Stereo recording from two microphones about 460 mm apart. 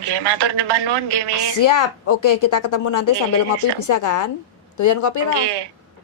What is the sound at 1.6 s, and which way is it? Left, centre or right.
A woman's voice, left.